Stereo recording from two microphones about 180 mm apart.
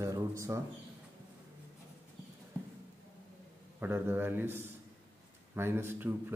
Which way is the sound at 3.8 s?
10° right (ahead or behind).